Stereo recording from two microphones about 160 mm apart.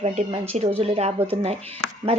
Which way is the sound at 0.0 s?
45° right (ahead or behind).